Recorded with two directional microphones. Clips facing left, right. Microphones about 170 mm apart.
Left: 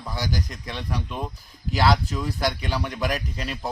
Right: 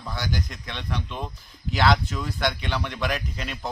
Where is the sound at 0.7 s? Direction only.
10° left (ahead or behind).